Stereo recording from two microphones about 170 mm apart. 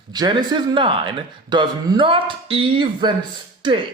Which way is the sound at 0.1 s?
25° right (ahead or behind).